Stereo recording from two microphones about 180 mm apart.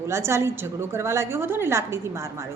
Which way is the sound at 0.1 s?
15° right (ahead or behind).